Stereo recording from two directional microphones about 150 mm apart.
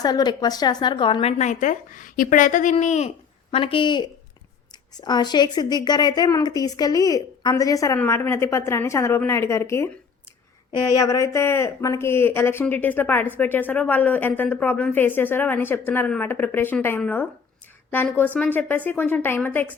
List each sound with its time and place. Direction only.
0.0 s speech: 25° left (ahead or behind)
1.4 s speech: 55° left (ahead or behind)
3.5 s a woman's voice: 35° left (ahead or behind); by 9.9 s 20° left (ahead or behind)
10.9 s speech: 20° left (ahead or behind)